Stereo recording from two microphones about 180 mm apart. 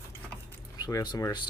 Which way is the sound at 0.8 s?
20° left (ahead or behind).